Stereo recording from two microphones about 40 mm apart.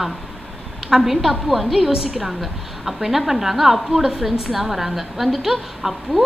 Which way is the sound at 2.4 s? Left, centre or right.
Centre.